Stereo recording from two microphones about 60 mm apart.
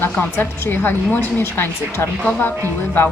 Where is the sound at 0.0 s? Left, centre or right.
Left.